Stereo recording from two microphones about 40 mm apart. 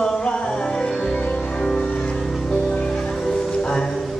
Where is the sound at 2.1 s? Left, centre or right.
Centre.